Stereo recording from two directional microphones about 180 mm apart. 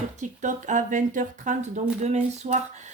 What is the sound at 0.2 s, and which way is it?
Speech, 45° right (ahead or behind).